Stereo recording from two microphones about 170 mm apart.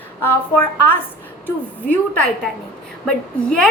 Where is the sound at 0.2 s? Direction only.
10° left (ahead or behind).